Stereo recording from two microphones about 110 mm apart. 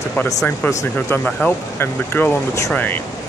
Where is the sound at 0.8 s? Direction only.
15° left (ahead or behind).